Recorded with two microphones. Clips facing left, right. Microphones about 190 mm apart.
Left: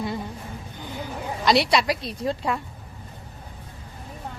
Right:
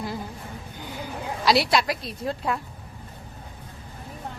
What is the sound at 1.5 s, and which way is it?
A woman's voice, centre (ahead or behind).